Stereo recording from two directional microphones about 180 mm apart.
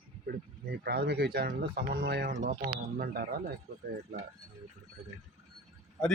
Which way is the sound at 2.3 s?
40° right (ahead or behind).